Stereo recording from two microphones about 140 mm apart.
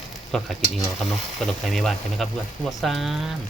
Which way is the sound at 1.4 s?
Centre (ahead or behind).